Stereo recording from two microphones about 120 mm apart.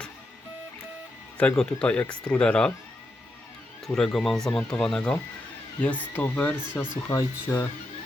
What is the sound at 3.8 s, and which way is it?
Speech, 5° left (ahead or behind).